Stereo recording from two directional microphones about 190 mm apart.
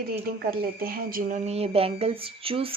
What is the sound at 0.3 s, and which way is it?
Speech, 50° right (ahead or behind).